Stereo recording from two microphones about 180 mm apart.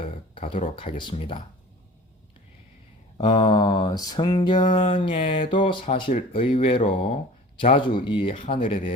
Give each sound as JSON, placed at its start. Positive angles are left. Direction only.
{"t": 0.0, "sound": "speech", "side_deg": 30}
{"t": 3.2, "sound": "a sound", "side_deg": 25}
{"t": 5.8, "sound": "speech", "side_deg": 40}